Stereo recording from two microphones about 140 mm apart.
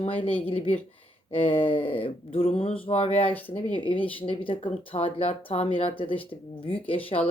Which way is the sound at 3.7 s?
40° left (ahead or behind).